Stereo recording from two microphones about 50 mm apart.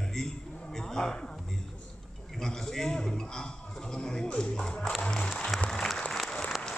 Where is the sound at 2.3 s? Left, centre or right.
Centre.